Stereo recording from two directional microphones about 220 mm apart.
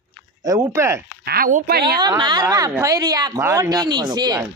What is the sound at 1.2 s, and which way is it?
Speech, 40° right (ahead or behind).